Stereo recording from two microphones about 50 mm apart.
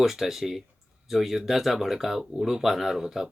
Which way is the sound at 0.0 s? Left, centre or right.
Centre.